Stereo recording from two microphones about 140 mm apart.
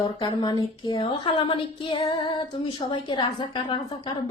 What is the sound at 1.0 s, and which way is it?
Speech, 35° left (ahead or behind).